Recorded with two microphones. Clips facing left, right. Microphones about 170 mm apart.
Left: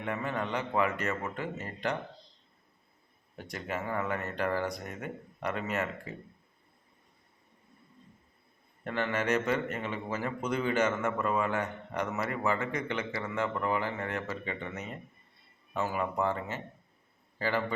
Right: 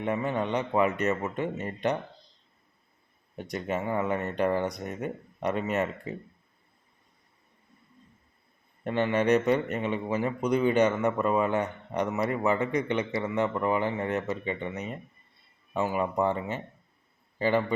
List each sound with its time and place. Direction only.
0.0 s a man's voice: 20° right (ahead or behind)
3.5 s a man's voice: 20° right (ahead or behind)
8.8 s a man's voice: 20° right (ahead or behind)